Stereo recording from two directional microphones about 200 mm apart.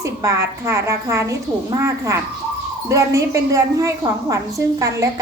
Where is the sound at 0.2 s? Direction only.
15° right (ahead or behind).